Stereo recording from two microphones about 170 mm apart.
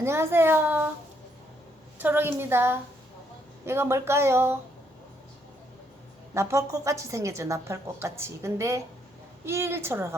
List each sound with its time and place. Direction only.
0.0 s a woman's voice: 15° right (ahead or behind)
2.0 s a woman's voice: 10° right (ahead or behind)
6.3 s a woman's voice: 15° right (ahead or behind)